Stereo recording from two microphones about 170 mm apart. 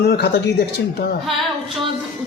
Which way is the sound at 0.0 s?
65° left (ahead or behind).